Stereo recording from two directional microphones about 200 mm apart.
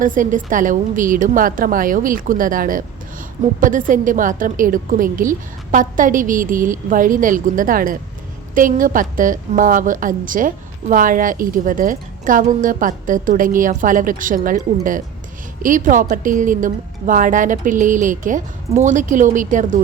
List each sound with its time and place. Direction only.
0.0 s a woman's voice: 40° right (ahead or behind)